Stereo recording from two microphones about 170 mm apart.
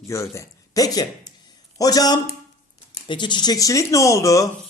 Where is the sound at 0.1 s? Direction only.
20° left (ahead or behind).